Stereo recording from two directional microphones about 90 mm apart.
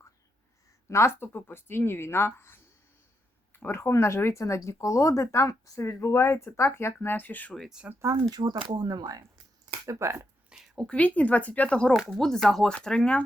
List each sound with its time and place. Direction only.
0.9 s speech: 30° left (ahead or behind)
7.9 s speech: 15° right (ahead or behind)
8.3 s speech: 50° right (ahead or behind); by 10.2 s 30° right (ahead or behind)
10.5 s a sound: 5° right (ahead or behind)
10.8 s speech: 15° left (ahead or behind)